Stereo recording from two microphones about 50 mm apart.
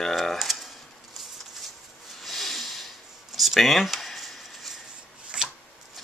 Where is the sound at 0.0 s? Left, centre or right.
Centre.